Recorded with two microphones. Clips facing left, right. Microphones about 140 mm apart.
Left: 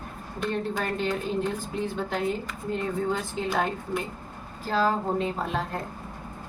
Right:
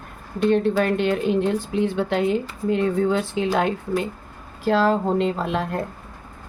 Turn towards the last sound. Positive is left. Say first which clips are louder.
# right 6 dB
turn(degrees=-75)  # may be behind; listen again after turning